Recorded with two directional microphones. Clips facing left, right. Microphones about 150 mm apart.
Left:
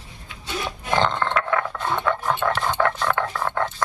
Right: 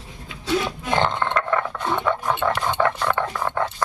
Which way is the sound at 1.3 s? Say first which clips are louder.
Right 1 dB; centre (ahead or behind).